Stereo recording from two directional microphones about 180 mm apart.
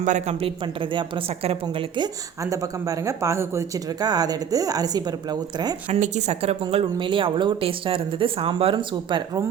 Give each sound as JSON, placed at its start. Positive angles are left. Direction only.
{"t": 0.0, "sound": "speech", "side_deg": -40}
{"t": 5.9, "sound": "speech", "side_deg": -40}